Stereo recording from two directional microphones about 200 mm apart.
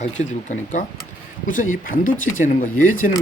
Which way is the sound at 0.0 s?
35° left (ahead or behind).